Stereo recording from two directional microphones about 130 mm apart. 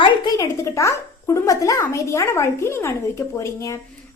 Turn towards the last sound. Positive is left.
turn(degrees=20)  # may be behind; listen again after turning